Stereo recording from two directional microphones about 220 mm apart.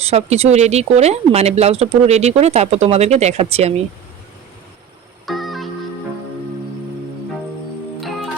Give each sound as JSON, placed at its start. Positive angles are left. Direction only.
{"t": 0.0, "sound": "speech", "side_deg": -30}
{"t": 5.2, "sound": "music", "side_deg": 0}